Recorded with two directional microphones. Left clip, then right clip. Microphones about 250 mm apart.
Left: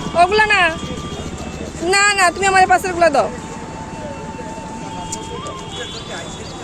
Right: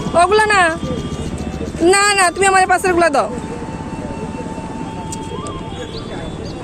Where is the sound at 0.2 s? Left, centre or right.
Centre.